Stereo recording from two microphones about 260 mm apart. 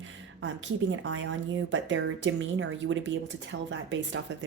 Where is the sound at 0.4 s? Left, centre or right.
Right.